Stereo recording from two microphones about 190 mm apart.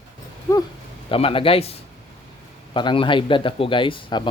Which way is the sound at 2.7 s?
25° left (ahead or behind).